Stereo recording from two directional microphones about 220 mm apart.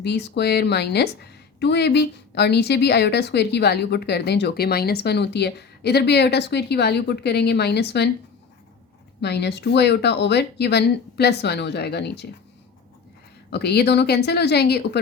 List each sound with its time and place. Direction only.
0.0 s a woman's voice: 50° left (ahead or behind)
9.2 s a woman's voice: 50° left (ahead or behind)
13.5 s a woman's voice: 50° left (ahead or behind)